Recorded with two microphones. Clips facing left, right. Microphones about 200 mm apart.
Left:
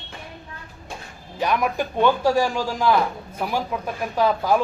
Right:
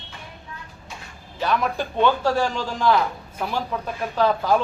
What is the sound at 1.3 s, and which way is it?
A man's voice, 15° left (ahead or behind).